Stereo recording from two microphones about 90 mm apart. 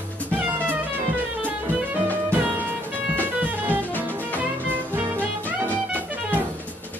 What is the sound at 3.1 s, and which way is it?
Music, 20° right (ahead or behind).